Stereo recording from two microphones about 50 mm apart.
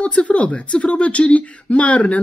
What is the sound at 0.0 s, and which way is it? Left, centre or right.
Speech, left.